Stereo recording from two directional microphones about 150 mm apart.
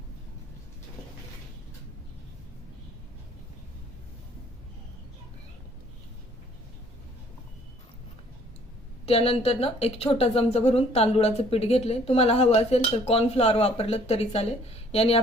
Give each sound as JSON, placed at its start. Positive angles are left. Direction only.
{"t": 9.0, "sound": "a woman's voice", "side_deg": 40}